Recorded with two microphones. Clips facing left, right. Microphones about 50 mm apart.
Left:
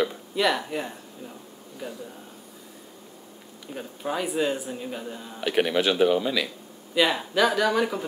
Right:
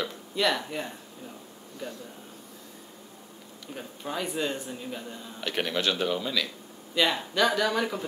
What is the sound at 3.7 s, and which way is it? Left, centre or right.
Speech, centre.